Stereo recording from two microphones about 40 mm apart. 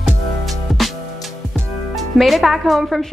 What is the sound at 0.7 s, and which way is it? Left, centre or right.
Music, centre.